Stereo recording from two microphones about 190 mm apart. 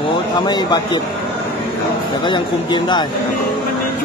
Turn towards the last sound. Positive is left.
turn(degrees=25)  # may be behind; listen again after turning